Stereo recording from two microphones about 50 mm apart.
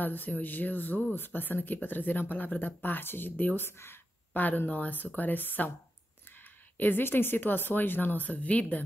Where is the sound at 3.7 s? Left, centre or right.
Left.